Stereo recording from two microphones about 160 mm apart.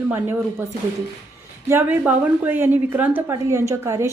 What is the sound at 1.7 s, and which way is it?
A woman's voice, 10° right (ahead or behind).